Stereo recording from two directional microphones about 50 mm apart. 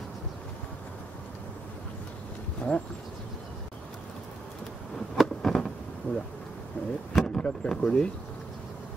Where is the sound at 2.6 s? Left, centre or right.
Left.